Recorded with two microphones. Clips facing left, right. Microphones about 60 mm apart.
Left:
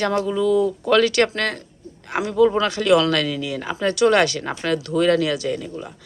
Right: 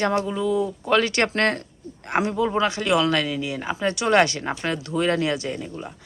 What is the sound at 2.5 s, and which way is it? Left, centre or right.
Speech, right.